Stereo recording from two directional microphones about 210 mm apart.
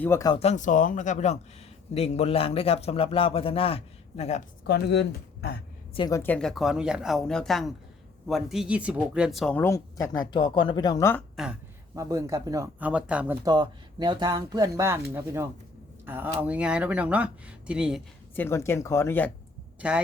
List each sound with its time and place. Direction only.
0.0 s speech: 15° left (ahead or behind)
0.3 s a man's voice: 35° left (ahead or behind)
4.6 s speech: 50° left (ahead or behind)
5.9 s speech: 20° left (ahead or behind)
11.9 s speech: 15° right (ahead or behind)
13.4 s speech: 20° right (ahead or behind); by 18.0 s 5° right (ahead or behind)
18.3 s speech: 10° left (ahead or behind)